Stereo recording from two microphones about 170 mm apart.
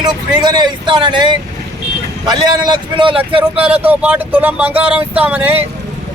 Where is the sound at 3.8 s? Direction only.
10° right (ahead or behind).